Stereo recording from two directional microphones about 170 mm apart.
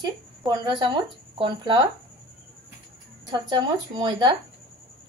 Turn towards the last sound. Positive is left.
turn(degrees=-25)  # may be behind; listen again after turning